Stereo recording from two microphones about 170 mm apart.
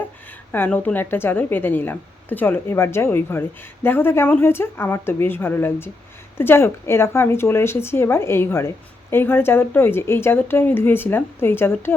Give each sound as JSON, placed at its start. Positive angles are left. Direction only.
{"t": 0.5, "sound": "speech", "side_deg": 10}